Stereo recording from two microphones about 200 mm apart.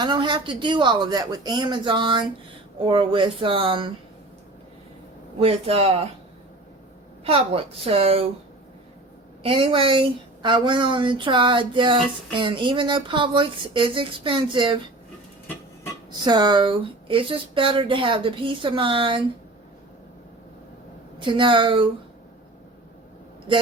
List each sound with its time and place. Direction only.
0.0 s speech: 20° right (ahead or behind)
5.4 s speech: 30° right (ahead or behind)
7.3 s speech: 30° right (ahead or behind)
9.4 s speech: 25° right (ahead or behind)
16.2 s speech: 20° right (ahead or behind)
21.2 s speech: 25° right (ahead or behind)